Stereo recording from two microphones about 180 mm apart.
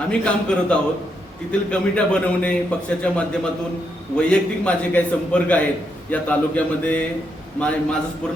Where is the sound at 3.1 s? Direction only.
5° left (ahead or behind).